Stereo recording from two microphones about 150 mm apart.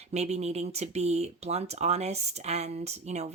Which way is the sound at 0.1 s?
45° right (ahead or behind).